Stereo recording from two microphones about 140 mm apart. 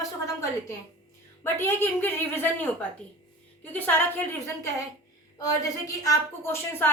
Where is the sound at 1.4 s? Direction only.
15° left (ahead or behind).